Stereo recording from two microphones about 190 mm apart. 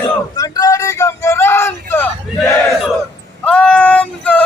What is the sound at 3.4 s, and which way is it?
Female singing, 5° left (ahead or behind).